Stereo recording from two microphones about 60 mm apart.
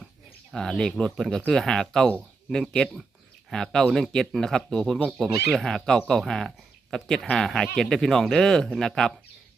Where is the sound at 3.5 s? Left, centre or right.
Centre.